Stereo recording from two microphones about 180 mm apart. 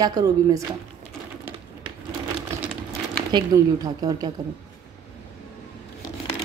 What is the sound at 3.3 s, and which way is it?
A woman's voice, 20° right (ahead or behind).